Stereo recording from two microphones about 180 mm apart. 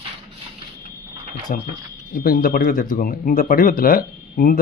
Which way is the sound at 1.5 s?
50° left (ahead or behind).